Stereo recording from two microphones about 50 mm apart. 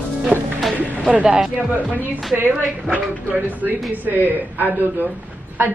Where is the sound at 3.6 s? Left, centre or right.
Right.